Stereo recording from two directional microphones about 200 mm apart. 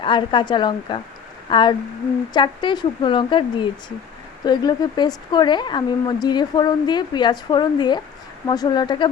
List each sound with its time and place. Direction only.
0.0 s a woman's voice: 25° left (ahead or behind)